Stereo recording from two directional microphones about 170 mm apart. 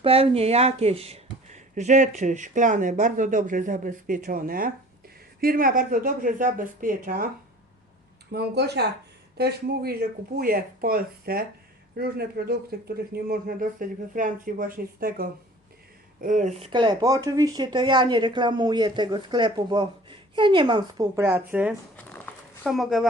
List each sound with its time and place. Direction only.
0.0 s speech: 35° right (ahead or behind); by 7.3 s 55° right (ahead or behind)
8.3 s speech: 75° right (ahead or behind); by 16.6 s 45° right (ahead or behind)
16.6 s speech: 25° right (ahead or behind)
21.2 s speech: 15° right (ahead or behind)
21.9 s a sound: 10° left (ahead or behind)
22.6 s speech: centre (ahead or behind)